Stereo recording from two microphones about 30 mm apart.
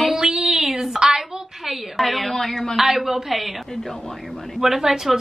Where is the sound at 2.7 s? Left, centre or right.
Centre.